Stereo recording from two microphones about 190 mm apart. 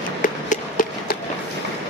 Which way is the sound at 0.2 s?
45° left (ahead or behind).